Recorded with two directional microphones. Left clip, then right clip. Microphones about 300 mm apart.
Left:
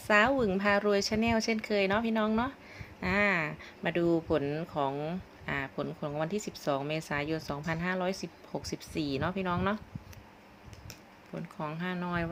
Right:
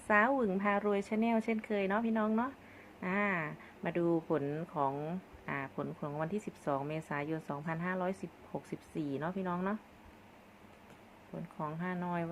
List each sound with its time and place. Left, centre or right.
0.1 s speech: centre
11.5 s speech: centre